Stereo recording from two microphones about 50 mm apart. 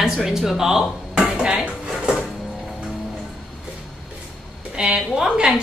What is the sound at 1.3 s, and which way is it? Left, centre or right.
Dishes, centre.